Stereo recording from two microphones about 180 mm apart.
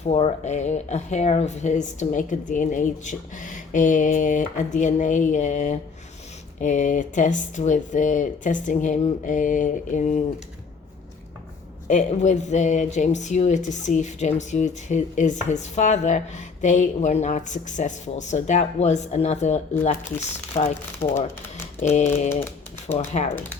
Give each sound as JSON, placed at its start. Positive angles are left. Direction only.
{"t": 0.0, "sound": "speech", "side_deg": 35}
{"t": 11.9, "sound": "speech", "side_deg": 40}
{"t": 21.0, "sound": "speech", "side_deg": 45}